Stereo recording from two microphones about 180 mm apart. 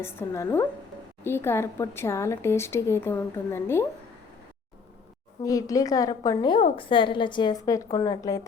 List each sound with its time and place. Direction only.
0.0 s speech: 15° left (ahead or behind)
5.4 s a woman's voice: 20° left (ahead or behind)